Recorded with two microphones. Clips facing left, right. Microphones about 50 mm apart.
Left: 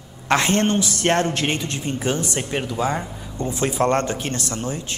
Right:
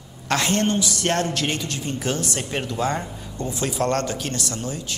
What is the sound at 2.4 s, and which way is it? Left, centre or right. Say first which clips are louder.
Speech: left 1 dB; centre.